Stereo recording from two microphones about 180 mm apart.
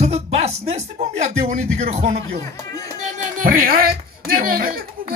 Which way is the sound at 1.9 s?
40° right (ahead or behind).